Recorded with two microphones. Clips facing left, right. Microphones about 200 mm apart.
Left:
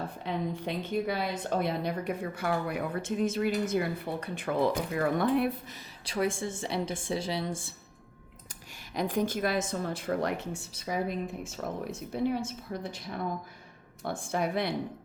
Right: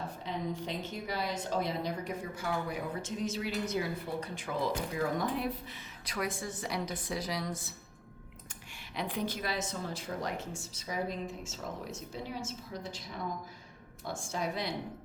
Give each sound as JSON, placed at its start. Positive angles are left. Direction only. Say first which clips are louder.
{"t": 0.3, "sound": "a woman's voice", "louder": "left 4 dB", "side_deg": 60}
{"t": 6.1, "sound": "a woman's voice", "louder": "left 6 dB", "side_deg": 30}
{"t": 9.0, "sound": "a woman's voice", "louder": "left 7 dB", "side_deg": 45}